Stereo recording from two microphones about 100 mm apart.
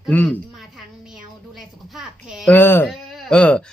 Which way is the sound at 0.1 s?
15° left (ahead or behind).